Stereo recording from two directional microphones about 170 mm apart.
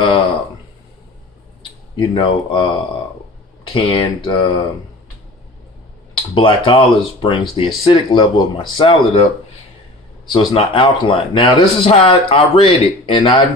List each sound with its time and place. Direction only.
1.6 s speech: 30° left (ahead or behind)
6.3 s speech: 30° left (ahead or behind)
10.2 s speech: 30° left (ahead or behind)